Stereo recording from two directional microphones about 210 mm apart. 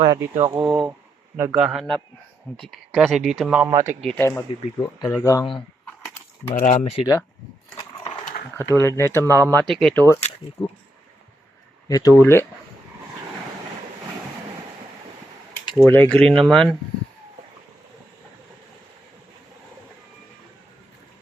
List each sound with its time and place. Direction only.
0.0 s speech: 20° right (ahead or behind)
0.6 s speech: centre (ahead or behind)
3.7 s speech: 15° right (ahead or behind)
4.0 s speech: 5° left (ahead or behind)
6.5 s speech: 35° left (ahead or behind)
8.7 s speech: 10° left (ahead or behind)
9.3 s speech: 15° right (ahead or behind)
9.6 s speech: centre (ahead or behind)
10.6 s speech: 25° left (ahead or behind)
11.9 s speech: 15° left (ahead or behind)
15.8 s speech: 5° left (ahead or behind)